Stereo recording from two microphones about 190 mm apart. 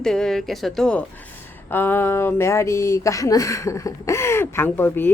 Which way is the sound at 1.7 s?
10° left (ahead or behind).